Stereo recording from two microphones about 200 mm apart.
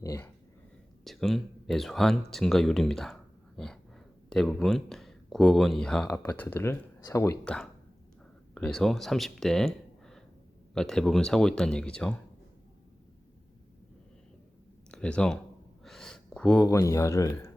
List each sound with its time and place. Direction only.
0.0 s speech: 15° left (ahead or behind)
1.0 s speech: centre (ahead or behind)
14.8 s speech: 5° left (ahead or behind)
15.8 s a sound: 5° left (ahead or behind)
16.6 s speech: 15° left (ahead or behind)